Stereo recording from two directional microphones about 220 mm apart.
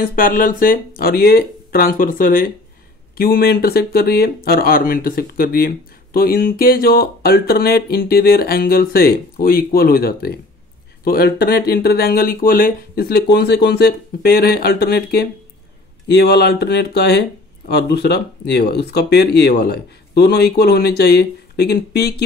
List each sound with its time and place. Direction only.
0.0 s speech: 40° left (ahead or behind)